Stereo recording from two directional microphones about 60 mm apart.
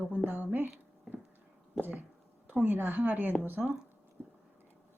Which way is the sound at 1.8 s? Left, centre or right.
Right.